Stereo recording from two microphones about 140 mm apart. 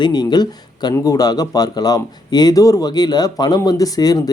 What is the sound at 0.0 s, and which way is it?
A man's voice, 30° left (ahead or behind).